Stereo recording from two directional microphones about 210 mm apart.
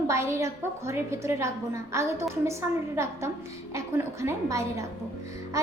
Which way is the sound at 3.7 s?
15° right (ahead or behind).